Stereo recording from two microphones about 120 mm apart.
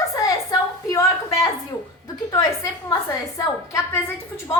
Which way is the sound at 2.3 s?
30° left (ahead or behind).